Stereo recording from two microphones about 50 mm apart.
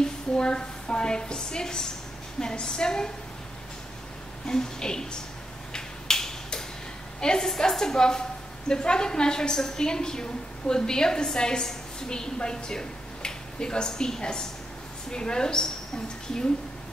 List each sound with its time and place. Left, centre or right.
0.0 s a woman's voice: centre
4.5 s a woman's voice: centre
5.7 s finger snapping: centre
7.2 s a woman's voice: centre